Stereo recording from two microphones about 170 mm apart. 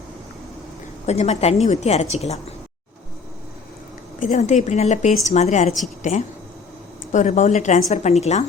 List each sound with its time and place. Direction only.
1.0 s a woman's voice: 40° left (ahead or behind)
4.2 s a woman's voice: 45° left (ahead or behind)